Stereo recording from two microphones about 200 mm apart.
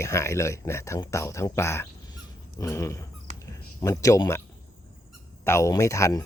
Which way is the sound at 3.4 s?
15° left (ahead or behind).